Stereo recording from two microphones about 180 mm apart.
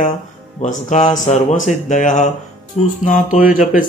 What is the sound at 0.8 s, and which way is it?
Speech, 40° left (ahead or behind).